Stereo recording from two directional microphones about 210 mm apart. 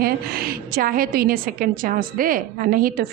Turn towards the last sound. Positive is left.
turn(degrees=-40)  # may be behind; listen again after turning